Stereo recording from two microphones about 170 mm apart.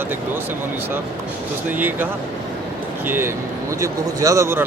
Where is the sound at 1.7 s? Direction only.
10° right (ahead or behind).